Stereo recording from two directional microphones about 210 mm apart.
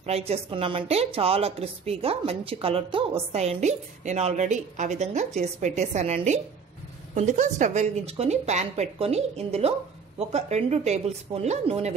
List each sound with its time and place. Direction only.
0.0 s a woman's voice: 30° right (ahead or behind)